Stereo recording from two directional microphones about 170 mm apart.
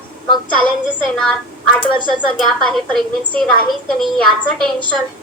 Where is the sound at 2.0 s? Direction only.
25° right (ahead or behind).